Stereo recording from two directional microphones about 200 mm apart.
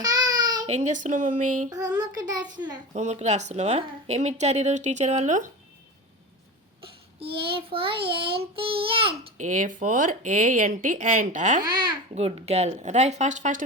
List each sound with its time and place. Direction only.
0.0 s child singing: 20° right (ahead or behind)
0.7 s a woman's voice: 35° right (ahead or behind)
1.7 s a sound: 20° right (ahead or behind)
2.9 s a woman's voice: 35° right (ahead or behind)
7.2 s child singing: 25° right (ahead or behind)
9.5 s a woman's voice: 40° right (ahead or behind)
11.7 s child singing: 20° right (ahead or behind)
12.1 s a woman's voice: 30° right (ahead or behind)